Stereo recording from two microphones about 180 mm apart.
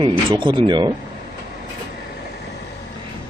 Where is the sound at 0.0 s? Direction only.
25° right (ahead or behind).